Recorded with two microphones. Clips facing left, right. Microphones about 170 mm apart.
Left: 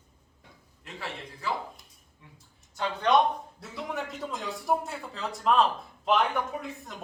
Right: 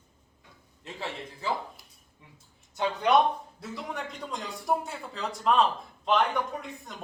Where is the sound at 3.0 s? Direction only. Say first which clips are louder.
Even; 10° right (ahead or behind).